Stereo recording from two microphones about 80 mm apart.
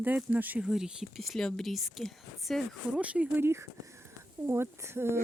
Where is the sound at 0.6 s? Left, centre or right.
Centre.